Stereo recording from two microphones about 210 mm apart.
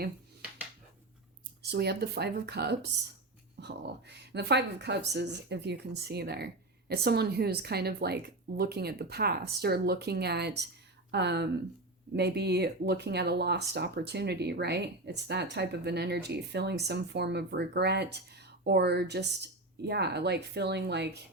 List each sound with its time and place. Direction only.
1.7 s speech: 50° right (ahead or behind)